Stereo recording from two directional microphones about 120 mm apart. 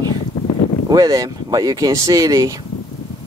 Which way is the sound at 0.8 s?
30° right (ahead or behind).